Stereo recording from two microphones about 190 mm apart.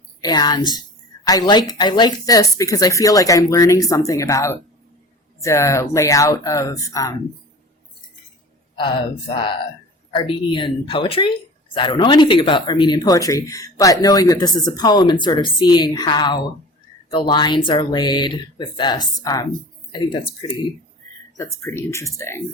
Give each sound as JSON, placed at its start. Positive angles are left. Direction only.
{"t": 0.2, "sound": "speech", "side_deg": 20}
{"t": 8.7, "sound": "speech", "side_deg": 25}
{"t": 21.3, "sound": "speech", "side_deg": 15}